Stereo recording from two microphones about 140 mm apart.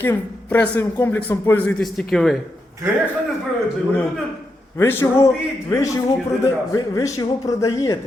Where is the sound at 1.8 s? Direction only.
5° left (ahead or behind).